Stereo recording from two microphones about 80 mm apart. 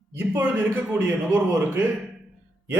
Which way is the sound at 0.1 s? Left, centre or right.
Right.